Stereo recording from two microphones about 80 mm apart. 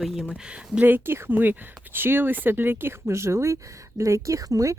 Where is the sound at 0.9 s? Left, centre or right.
Right.